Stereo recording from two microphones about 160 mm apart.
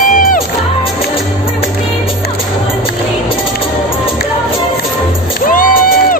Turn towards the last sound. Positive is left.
turn(degrees=60)  # may be behind; listen again after turning